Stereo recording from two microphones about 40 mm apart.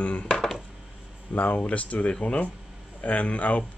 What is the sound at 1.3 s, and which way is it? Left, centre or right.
Speech, left.